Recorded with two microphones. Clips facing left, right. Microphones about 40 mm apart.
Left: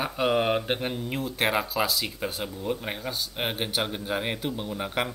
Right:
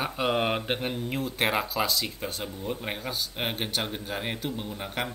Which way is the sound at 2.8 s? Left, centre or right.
Centre.